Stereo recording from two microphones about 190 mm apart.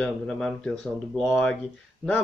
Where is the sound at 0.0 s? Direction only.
5° left (ahead or behind).